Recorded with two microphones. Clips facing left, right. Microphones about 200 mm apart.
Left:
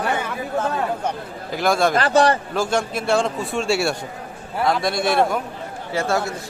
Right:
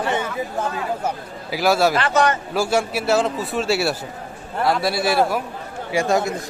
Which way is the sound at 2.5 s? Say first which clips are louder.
Right 1 dB; 10° right (ahead or behind).